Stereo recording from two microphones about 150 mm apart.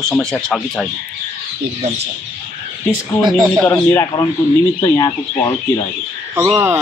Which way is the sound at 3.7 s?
20° left (ahead or behind).